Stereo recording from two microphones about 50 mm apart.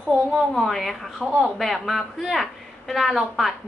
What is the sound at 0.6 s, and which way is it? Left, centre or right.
A woman's voice, centre.